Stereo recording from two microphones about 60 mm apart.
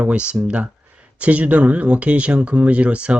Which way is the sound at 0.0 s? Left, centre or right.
Centre.